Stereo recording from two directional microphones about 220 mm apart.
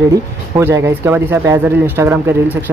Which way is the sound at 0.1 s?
15° right (ahead or behind).